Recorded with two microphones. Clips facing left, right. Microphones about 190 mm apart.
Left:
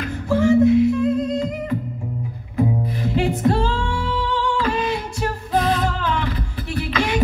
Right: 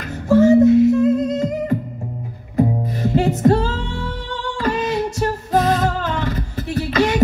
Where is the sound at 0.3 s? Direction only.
45° right (ahead or behind).